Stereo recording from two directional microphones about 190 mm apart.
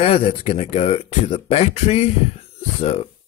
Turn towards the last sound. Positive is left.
turn(degrees=30)  # may be behind; listen again after turning